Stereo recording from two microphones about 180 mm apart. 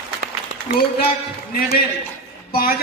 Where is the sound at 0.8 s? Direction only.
55° left (ahead or behind).